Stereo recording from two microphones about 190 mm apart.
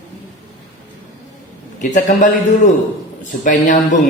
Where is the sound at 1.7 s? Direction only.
40° left (ahead or behind).